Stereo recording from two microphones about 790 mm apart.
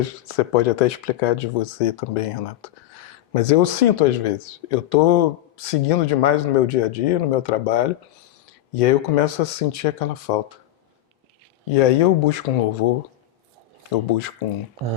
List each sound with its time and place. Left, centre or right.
0.0 s speech: left
11.7 s speech: left
14.4 s speech: left